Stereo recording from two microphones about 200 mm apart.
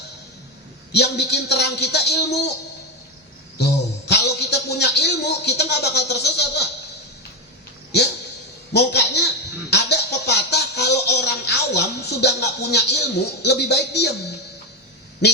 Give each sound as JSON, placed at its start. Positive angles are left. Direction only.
{"t": 0.9, "sound": "speech", "side_deg": 55}
{"t": 3.6, "sound": "a man's voice", "side_deg": 55}
{"t": 8.7, "sound": "a man's voice", "side_deg": 55}
{"t": 9.6, "sound": "a sound", "side_deg": 55}
{"t": 15.2, "sound": "speech", "side_deg": 55}